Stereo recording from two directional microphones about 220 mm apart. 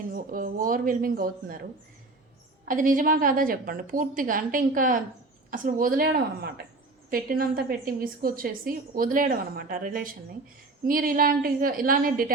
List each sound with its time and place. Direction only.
0.1 s a woman's voice: 40° right (ahead or behind)
2.6 s a woman's voice: 40° right (ahead or behind)